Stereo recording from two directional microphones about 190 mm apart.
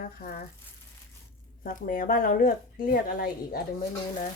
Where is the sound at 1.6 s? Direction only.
45° left (ahead or behind).